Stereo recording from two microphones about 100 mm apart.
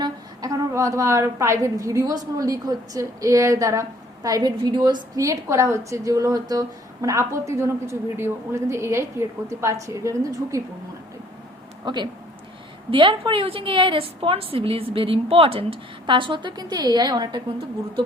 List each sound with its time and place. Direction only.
0.0 s a woman's voice: 35° right (ahead or behind)
5.1 s a woman's voice: 35° right (ahead or behind)
11.9 s a woman's voice: 50° right (ahead or behind)